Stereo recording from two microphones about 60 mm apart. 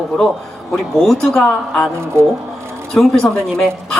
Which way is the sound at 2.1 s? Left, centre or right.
Right.